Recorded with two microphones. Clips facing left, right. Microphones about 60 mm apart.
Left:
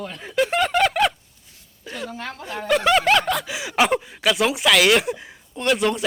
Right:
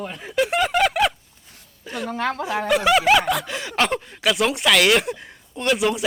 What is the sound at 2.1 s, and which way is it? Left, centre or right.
Speech, right.